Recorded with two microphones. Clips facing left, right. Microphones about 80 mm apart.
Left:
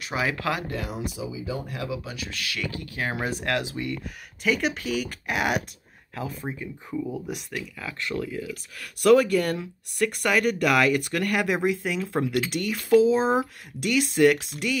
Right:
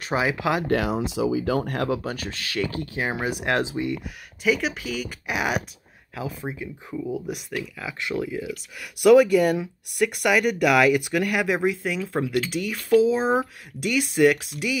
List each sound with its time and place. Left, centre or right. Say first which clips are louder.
0.2 s speech: right 2 dB; centre
0.7 s speech: right 8 dB; right
2.3 s speech: right 3 dB; right
3.6 s speech: right 4 dB; right
4.4 s speech: right 2 dB; centre